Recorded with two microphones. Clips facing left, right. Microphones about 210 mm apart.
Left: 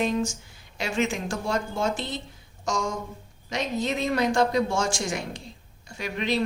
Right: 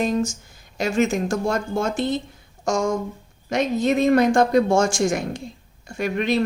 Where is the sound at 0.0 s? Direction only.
45° right (ahead or behind).